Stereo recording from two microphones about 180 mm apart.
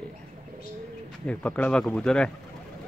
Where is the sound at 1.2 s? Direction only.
5° left (ahead or behind).